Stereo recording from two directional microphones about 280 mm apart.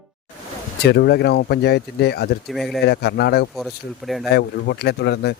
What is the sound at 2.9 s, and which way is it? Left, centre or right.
Speech, left.